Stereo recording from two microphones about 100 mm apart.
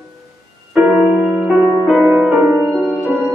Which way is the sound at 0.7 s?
10° right (ahead or behind).